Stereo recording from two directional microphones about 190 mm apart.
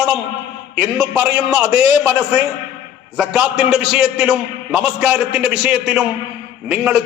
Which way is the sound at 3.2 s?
Centre (ahead or behind).